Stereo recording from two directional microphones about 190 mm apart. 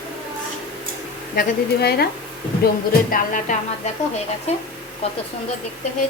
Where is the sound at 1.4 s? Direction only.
55° left (ahead or behind).